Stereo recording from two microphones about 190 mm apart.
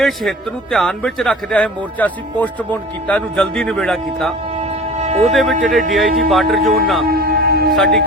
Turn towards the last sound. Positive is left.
turn(degrees=0)  # may be behind; listen again after turning